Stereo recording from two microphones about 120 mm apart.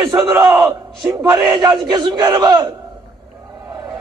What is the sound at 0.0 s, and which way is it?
Battle cry, 30° right (ahead or behind).